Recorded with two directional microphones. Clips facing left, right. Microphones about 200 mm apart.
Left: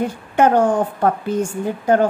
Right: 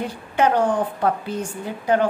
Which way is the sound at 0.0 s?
50° left (ahead or behind).